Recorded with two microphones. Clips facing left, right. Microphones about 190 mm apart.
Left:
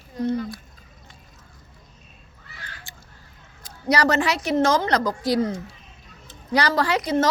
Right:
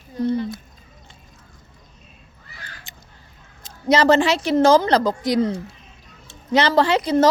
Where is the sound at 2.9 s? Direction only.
20° right (ahead or behind).